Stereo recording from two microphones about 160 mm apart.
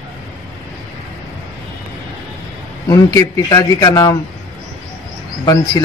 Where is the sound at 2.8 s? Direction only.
20° left (ahead or behind).